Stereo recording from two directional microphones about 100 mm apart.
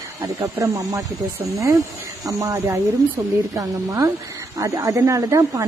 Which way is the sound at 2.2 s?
30° right (ahead or behind).